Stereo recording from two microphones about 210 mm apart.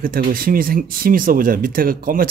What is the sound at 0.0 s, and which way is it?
Speech, 45° right (ahead or behind).